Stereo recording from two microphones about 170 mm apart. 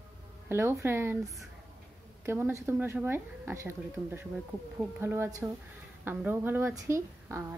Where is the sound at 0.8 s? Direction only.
15° right (ahead or behind).